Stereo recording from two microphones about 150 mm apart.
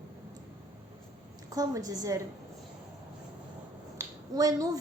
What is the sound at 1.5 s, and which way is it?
Speech, 25° right (ahead or behind).